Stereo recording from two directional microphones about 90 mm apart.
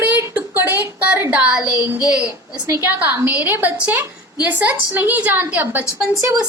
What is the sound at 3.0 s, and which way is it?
A woman's voice, 20° right (ahead or behind).